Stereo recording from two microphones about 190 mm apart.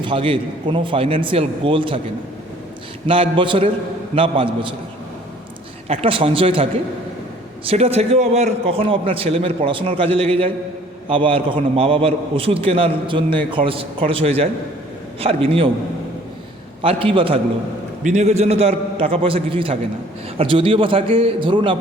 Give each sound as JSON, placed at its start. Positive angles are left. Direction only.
{"t": 0.0, "sound": "speech", "side_deg": -25}
{"t": 3.1, "sound": "speech", "side_deg": -25}
{"t": 5.9, "sound": "a man's voice", "side_deg": -30}
{"t": 16.8, "sound": "a man's voice", "side_deg": -30}